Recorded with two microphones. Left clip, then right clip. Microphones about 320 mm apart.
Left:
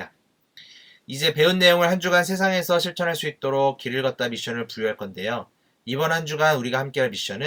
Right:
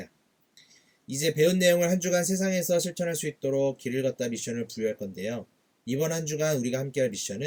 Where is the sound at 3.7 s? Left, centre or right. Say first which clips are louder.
Left 4 dB; centre.